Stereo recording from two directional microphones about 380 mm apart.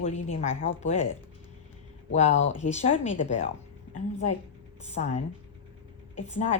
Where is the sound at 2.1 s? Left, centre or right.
Centre.